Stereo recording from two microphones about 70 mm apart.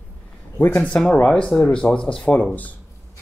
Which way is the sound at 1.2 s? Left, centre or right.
Centre.